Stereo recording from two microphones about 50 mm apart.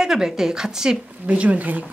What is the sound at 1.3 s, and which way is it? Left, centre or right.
Speech, right.